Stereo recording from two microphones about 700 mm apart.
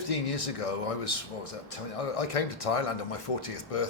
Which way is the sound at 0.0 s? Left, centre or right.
Left.